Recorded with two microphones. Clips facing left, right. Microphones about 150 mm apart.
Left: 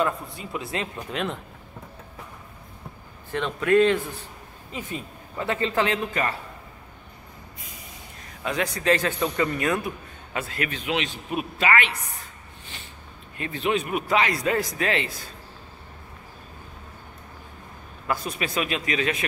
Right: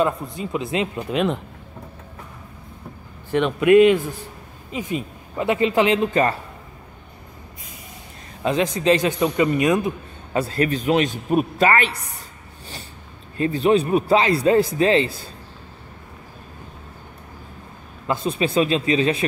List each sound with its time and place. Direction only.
0.0 s a man's voice: 20° right (ahead or behind)
3.3 s a man's voice: 15° right (ahead or behind)
8.4 s a man's voice: 25° right (ahead or behind)
10.3 s a man's voice: 35° right (ahead or behind)
13.4 s a man's voice: 35° right (ahead or behind)
18.0 s a man's voice: 25° right (ahead or behind)